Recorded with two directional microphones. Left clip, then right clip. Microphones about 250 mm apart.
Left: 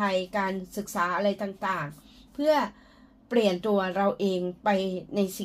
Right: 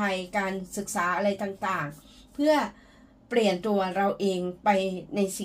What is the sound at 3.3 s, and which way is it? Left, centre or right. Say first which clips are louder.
Speech: even; left.